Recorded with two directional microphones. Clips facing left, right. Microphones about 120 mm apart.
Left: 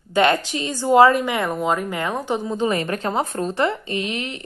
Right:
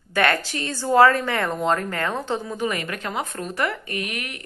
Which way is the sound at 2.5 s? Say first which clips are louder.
Left 5 dB; 30° left (ahead or behind).